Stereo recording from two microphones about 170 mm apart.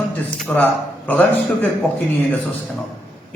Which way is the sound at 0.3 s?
10° left (ahead or behind).